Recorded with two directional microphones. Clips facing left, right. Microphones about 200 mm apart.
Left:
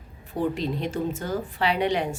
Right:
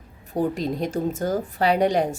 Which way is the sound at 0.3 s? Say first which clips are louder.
Right 3 dB; 40° right (ahead or behind).